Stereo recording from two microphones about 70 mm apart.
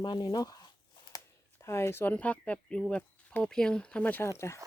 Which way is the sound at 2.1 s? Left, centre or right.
Centre.